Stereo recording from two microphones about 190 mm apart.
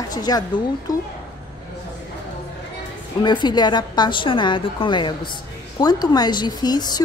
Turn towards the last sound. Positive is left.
turn(degrees=20)  # may be behind; listen again after turning